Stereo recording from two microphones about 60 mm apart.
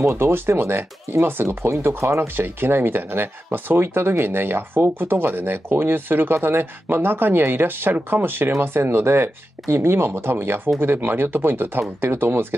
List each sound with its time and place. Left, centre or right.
0.1 s speech: right